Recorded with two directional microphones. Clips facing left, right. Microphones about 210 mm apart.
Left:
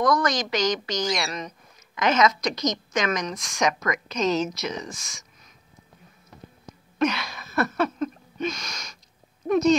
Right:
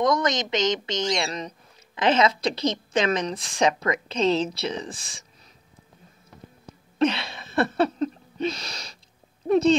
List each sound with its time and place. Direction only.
0.0 s a woman's voice: 25° right (ahead or behind)
7.0 s a sound: 30° right (ahead or behind)
9.5 s a woman's voice: 30° right (ahead or behind)